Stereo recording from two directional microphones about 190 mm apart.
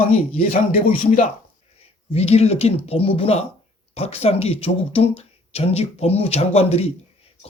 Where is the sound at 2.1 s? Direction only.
35° left (ahead or behind).